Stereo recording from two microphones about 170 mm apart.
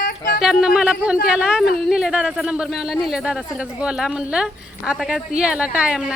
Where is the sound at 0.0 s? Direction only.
60° left (ahead or behind).